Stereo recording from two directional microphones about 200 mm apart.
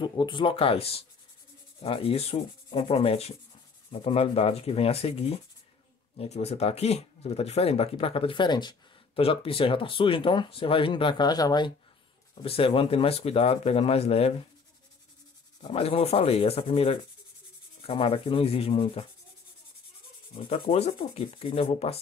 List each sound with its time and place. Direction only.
0.0 s speech: 25° left (ahead or behind)
15.6 s speech: 30° left (ahead or behind)
20.3 s speech: 25° left (ahead or behind)